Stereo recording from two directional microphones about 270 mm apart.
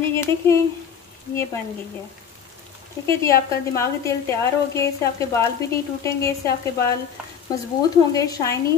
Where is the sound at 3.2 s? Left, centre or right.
Centre.